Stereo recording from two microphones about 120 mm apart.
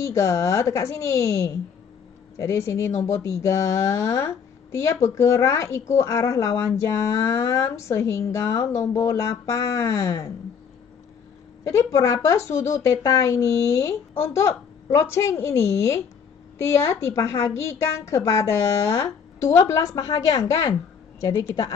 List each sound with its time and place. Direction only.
0.0 s speech: 25° left (ahead or behind)
11.6 s speech: 25° left (ahead or behind)
21.4 s speech: 30° left (ahead or behind)